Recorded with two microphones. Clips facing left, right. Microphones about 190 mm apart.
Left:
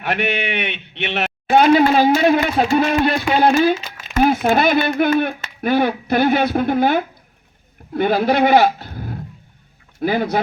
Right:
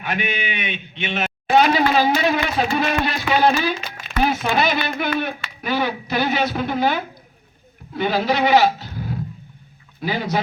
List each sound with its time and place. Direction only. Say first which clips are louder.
0.0 s a man's voice: left 4 dB; 70° left (ahead or behind); by 10.4 s 55° left (ahead or behind)